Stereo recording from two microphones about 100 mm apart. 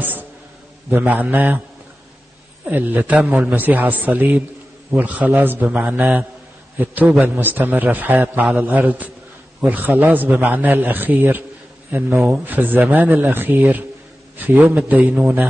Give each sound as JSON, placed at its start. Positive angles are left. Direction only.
{"t": 0.0, "sound": "a sound", "side_deg": -20}
{"t": 0.9, "sound": "a man's voice", "side_deg": -15}
{"t": 2.7, "sound": "a man's voice", "side_deg": -20}
{"t": 7.3, "sound": "a man's voice", "side_deg": -20}